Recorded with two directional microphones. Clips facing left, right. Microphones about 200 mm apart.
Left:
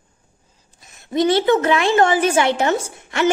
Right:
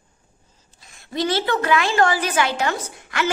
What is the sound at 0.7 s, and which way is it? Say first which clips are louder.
A woman's voice: left 6 dB; 20° left (ahead or behind).